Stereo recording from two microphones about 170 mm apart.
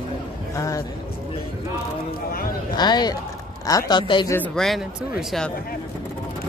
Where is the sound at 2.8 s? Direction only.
25° left (ahead or behind).